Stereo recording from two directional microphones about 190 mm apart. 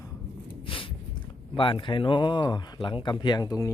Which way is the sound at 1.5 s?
25° left (ahead or behind).